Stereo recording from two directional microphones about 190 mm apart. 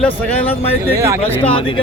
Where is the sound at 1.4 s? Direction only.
30° left (ahead or behind).